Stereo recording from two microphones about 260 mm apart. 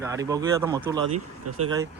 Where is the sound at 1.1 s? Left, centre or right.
Right.